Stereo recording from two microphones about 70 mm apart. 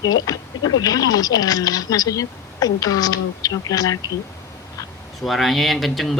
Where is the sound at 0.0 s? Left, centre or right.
Left.